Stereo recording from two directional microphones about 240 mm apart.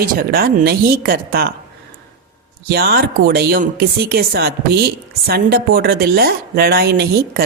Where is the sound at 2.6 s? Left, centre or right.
Right.